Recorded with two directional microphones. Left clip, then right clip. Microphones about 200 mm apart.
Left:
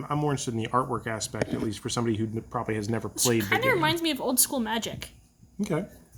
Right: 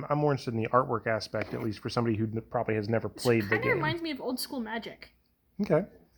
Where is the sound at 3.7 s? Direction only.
40° left (ahead or behind).